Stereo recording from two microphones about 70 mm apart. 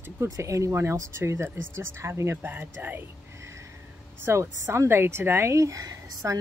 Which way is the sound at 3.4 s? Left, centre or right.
Right.